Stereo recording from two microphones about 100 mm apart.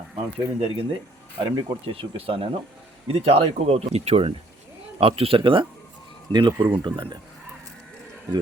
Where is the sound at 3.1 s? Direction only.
85° right; by 7.2 s 55° right (ahead or behind).